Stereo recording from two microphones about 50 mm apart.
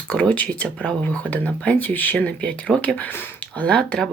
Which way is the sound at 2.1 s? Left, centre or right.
Left.